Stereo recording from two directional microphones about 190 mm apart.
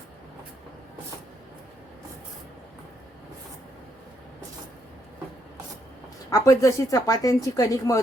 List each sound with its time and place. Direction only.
6.3 s speech: 15° left (ahead or behind)